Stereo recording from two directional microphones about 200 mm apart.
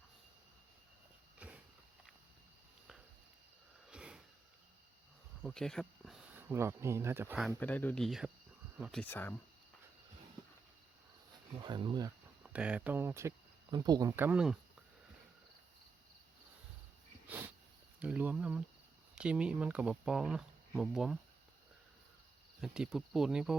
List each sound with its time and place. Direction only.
1.4 s a sound: 5° right (ahead or behind)
3.8 s a sound: 5° right (ahead or behind)
5.4 s speech: centre (ahead or behind)
6.5 s speech: 15° right (ahead or behind)
7.3 s speech: 5° left (ahead or behind)
11.6 s speech: 20° right (ahead or behind)
12.4 s speech: 5° right (ahead or behind)
18.0 s speech: 5° right (ahead or behind)
22.6 s speech: 5° right (ahead or behind)